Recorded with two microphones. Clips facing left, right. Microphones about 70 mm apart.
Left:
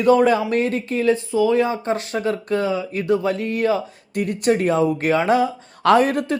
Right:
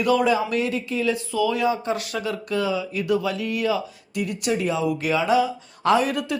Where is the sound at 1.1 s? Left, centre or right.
Left.